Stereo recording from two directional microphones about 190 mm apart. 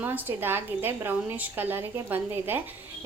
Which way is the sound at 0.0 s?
10° right (ahead or behind).